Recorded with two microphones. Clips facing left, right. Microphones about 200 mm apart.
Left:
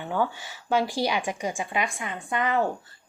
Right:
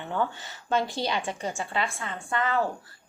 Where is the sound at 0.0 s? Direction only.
10° left (ahead or behind).